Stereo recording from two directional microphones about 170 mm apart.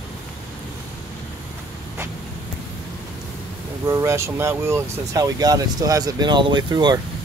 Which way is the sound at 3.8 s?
15° right (ahead or behind).